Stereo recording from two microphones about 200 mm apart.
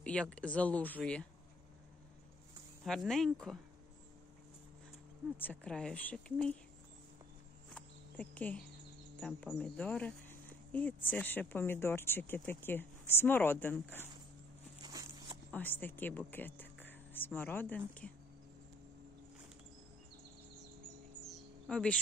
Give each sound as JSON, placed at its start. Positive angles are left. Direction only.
{"t": 0.0, "sound": "speech", "side_deg": 5}
{"t": 2.8, "sound": "speech", "side_deg": 0}
{"t": 5.4, "sound": "speech", "side_deg": 5}
{"t": 7.7, "sound": "insect", "side_deg": 10}
{"t": 9.2, "sound": "speech", "side_deg": 5}
{"t": 14.8, "sound": "a sound", "side_deg": -20}
{"t": 15.5, "sound": "speech", "side_deg": 10}
{"t": 21.3, "sound": "a sound", "side_deg": 5}